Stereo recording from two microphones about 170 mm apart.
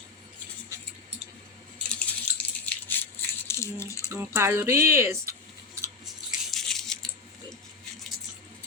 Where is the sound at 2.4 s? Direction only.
10° left (ahead or behind).